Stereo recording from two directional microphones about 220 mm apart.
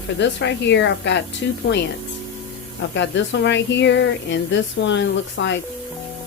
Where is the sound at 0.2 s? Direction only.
55° left (ahead or behind).